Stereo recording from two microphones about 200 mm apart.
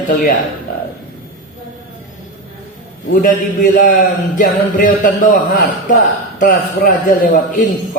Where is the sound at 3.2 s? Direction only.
40° left (ahead or behind).